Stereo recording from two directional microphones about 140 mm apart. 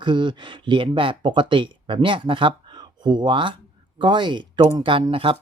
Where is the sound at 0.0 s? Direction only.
35° right (ahead or behind).